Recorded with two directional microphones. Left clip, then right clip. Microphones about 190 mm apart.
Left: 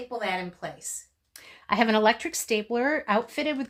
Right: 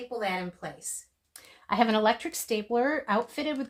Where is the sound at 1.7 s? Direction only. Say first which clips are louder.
Left 2 dB; 20° left (ahead or behind).